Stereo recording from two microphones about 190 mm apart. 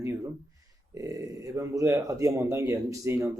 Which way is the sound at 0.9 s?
15° right (ahead or behind).